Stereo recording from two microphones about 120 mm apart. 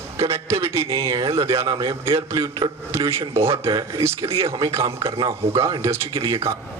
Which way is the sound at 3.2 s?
55° right (ahead or behind).